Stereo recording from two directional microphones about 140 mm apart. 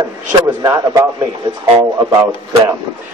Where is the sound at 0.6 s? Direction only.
25° right (ahead or behind).